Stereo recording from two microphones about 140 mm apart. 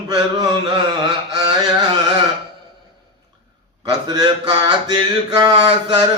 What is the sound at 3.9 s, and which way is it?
Mantra, 30° right (ahead or behind).